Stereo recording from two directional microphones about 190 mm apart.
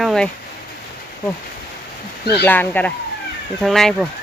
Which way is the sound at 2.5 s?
10° left (ahead or behind).